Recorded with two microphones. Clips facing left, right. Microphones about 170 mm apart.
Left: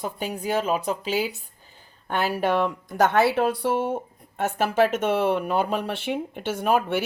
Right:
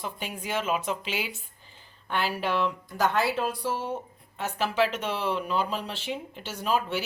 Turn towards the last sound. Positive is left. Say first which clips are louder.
# left 5 dB
turn(degrees=55)  # may be behind; listen again after turning